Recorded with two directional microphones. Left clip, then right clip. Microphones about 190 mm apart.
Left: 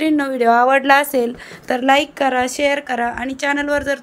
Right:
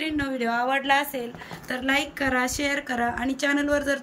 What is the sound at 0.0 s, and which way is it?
A woman's voice, 20° left (ahead or behind).